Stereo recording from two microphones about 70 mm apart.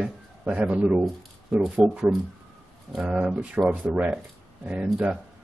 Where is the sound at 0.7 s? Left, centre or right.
Right.